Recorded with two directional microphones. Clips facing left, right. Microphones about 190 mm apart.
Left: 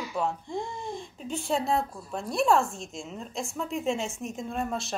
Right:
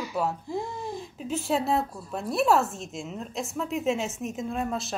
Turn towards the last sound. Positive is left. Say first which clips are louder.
# right 2 dB
turn(degrees=0)  # may be behind; listen again after turning